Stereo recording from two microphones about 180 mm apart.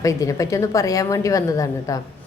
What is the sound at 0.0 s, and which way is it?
A woman's voice, 20° left (ahead or behind).